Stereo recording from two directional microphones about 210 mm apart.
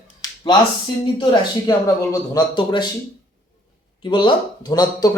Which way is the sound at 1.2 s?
20° left (ahead or behind).